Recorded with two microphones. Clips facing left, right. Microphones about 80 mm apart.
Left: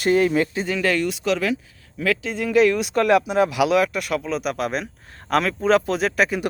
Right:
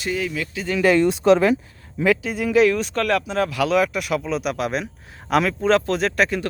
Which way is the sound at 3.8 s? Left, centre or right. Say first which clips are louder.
Even; centre.